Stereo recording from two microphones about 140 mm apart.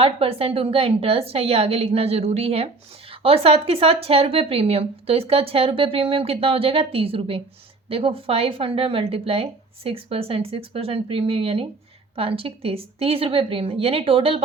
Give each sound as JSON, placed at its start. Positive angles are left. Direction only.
{"t": 0.0, "sound": "a woman's voice", "side_deg": -45}